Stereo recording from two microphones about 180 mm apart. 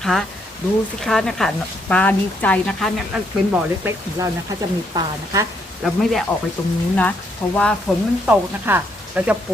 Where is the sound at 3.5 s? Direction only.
10° right (ahead or behind).